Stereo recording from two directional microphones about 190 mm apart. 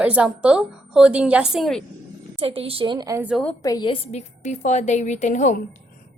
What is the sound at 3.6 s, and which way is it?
A woman's voice, 20° left (ahead or behind).